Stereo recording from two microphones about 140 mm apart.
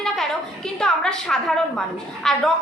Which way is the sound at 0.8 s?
5° left (ahead or behind).